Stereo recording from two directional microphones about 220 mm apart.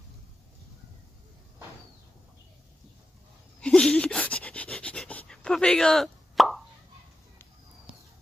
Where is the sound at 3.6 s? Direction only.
5° left (ahead or behind).